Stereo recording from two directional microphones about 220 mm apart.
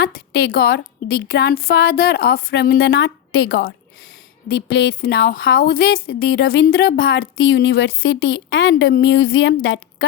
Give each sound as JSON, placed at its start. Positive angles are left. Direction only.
{"t": 0.0, "sound": "a woman's voice", "side_deg": 45}